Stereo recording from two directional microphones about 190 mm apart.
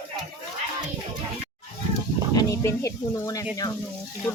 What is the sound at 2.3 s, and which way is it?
Speech, 20° left (ahead or behind).